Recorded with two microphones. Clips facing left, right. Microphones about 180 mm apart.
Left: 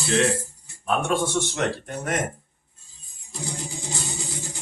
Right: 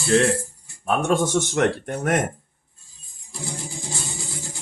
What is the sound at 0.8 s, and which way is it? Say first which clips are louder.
Speech: right 3 dB; 40° right (ahead or behind).